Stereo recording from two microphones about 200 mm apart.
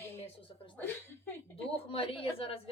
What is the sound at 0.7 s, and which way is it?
Speech, 10° left (ahead or behind).